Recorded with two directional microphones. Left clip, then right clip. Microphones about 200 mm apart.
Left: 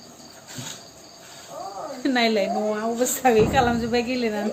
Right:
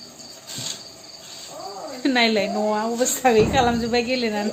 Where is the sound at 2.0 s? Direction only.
20° right (ahead or behind).